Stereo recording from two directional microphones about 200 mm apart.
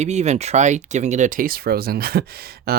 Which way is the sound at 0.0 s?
35° right (ahead or behind).